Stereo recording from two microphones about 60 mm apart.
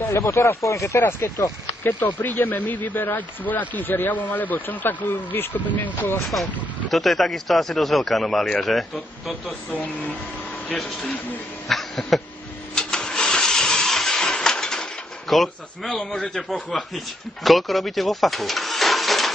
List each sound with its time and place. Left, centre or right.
0.1 s speech: left
1.8 s speech: left
6.9 s speech: centre
10.7 s a man's voice: centre
11.7 s a sound: centre
16.0 s a man's voice: centre
16.4 s speech: centre